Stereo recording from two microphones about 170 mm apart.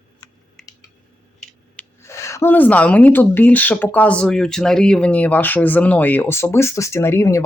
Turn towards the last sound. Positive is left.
turn(degrees=15)  # may be behind; listen again after turning